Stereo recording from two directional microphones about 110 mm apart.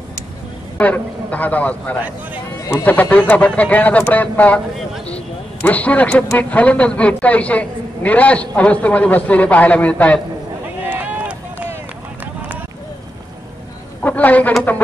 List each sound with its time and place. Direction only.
0.7 s speech: 15° left (ahead or behind)
10.9 s run: 15° right (ahead or behind)
14.0 s a sound: 15° left (ahead or behind)